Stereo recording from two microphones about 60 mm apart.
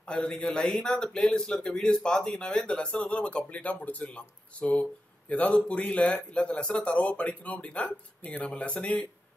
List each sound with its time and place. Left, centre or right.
0.0 s a man's voice: centre